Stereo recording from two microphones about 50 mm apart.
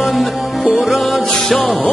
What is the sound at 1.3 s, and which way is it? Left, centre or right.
Music, centre.